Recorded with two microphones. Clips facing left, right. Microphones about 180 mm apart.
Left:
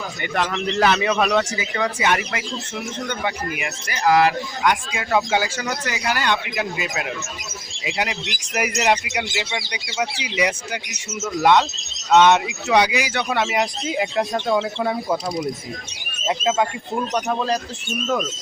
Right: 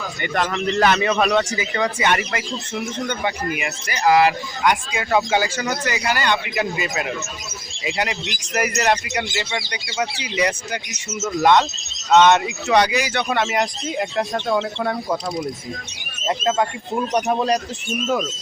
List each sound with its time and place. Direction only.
0.2 s speech: centre (ahead or behind)
17.2 s speech: 15° right (ahead or behind)